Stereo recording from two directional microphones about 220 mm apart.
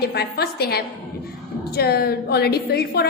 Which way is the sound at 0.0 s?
45° left (ahead or behind).